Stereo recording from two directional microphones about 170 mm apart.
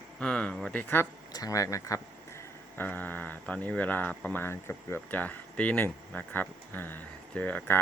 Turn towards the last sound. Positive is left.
turn(degrees=10)  # may be behind; listen again after turning